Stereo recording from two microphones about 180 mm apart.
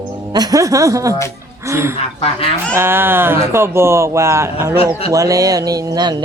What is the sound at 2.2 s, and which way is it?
Speech, 30° left (ahead or behind).